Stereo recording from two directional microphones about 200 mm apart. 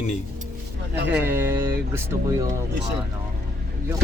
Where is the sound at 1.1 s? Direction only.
10° right (ahead or behind).